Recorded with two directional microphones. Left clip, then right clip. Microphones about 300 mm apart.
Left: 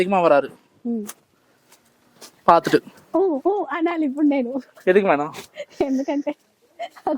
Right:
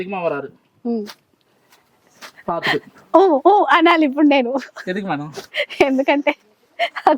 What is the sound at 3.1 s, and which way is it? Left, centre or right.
Speech, centre.